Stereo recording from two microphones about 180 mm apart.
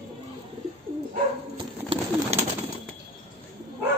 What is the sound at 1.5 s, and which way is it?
Bird, 30° right (ahead or behind).